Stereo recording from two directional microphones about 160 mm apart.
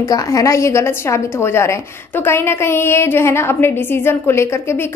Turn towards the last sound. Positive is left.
turn(degrees=15)  # may be behind; listen again after turning